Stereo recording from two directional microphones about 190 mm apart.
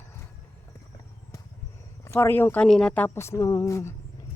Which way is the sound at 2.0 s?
15° left (ahead or behind).